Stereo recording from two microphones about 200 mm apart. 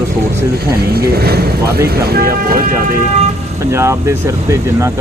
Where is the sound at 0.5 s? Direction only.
50° right (ahead or behind).